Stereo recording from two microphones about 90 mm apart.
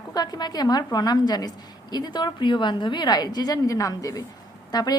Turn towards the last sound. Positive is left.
turn(degrees=45)  # may be behind; listen again after turning